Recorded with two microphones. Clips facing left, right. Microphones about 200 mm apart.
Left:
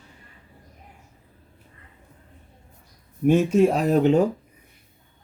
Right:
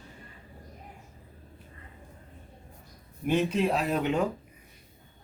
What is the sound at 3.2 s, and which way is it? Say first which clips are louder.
Speech: left 8 dB; 45° left (ahead or behind).